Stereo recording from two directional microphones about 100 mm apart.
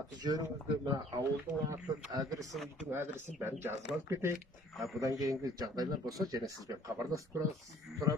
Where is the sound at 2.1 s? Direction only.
35° right (ahead or behind).